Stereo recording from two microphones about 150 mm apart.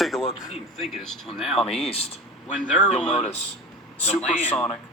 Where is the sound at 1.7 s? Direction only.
40° left (ahead or behind).